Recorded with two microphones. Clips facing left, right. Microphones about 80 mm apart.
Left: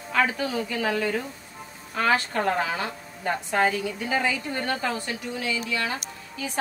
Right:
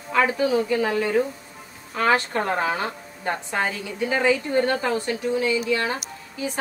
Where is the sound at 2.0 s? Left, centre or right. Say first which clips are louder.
Right 2 dB; right.